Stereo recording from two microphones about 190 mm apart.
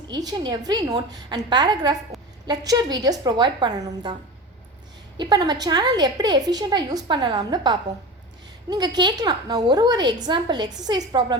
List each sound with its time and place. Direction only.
0.1 s a woman's voice: 20° right (ahead or behind)
5.1 s a woman's voice: 25° right (ahead or behind)